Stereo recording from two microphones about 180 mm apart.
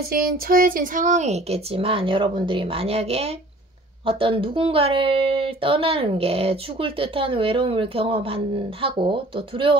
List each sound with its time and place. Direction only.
0.1 s speech: 50° right (ahead or behind); by 9.8 s 30° right (ahead or behind)